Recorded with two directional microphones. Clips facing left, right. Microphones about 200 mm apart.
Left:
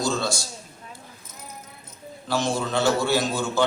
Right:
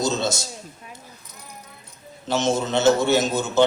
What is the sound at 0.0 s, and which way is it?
Speech, 20° right (ahead or behind).